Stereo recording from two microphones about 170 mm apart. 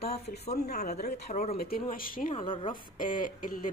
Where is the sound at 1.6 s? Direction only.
60° left (ahead or behind).